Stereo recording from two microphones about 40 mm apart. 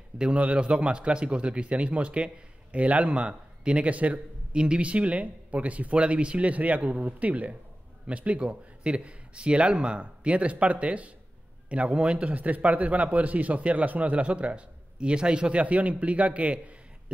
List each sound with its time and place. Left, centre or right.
0.2 s a man's voice: right
15.6 s a man's voice: right